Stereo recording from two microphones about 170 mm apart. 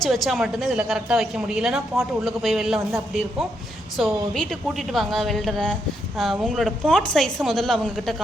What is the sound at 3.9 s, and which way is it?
Speech, centre (ahead or behind).